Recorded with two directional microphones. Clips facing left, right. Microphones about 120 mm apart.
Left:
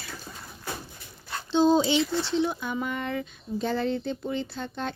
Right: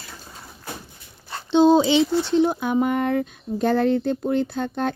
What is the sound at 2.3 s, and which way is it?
Speech, 50° right (ahead or behind).